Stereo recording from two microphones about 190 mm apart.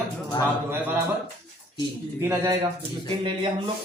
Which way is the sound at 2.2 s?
15° right (ahead or behind).